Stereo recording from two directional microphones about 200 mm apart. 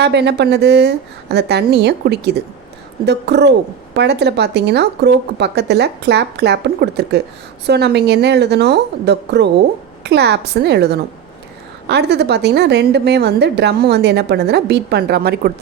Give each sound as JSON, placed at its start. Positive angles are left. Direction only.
{"t": 0.0, "sound": "a woman's voice", "side_deg": -60}